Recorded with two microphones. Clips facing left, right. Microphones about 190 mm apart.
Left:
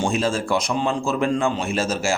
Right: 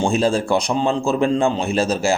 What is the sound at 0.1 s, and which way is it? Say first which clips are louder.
Speech: right 4 dB; 35° right (ahead or behind).